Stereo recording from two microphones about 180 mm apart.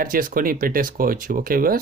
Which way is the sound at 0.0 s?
50° right (ahead or behind).